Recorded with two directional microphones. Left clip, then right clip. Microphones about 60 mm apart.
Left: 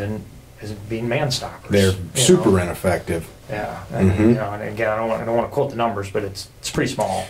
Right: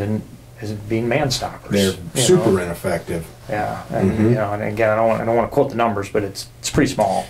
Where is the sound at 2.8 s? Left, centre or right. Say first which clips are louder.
Left 4 dB; left.